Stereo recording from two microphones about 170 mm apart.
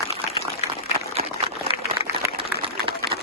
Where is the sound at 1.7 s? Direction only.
35° left (ahead or behind).